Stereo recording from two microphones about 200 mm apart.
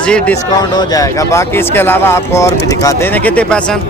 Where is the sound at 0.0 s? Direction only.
5° left (ahead or behind).